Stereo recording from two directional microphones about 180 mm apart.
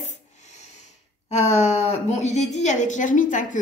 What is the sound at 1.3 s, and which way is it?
A woman's voice, 40° left (ahead or behind).